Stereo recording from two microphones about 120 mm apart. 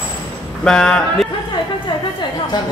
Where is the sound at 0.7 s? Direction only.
5° left (ahead or behind).